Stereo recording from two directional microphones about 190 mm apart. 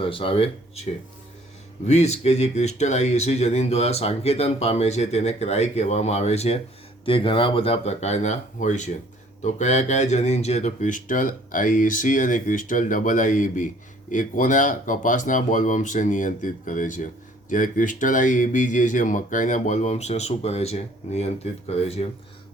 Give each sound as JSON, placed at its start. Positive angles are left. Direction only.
{"t": 0.0, "sound": "speech", "side_deg": 30}
{"t": 1.9, "sound": "speech", "side_deg": 35}